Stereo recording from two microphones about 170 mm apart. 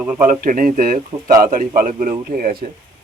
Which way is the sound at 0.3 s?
55° right (ahead or behind).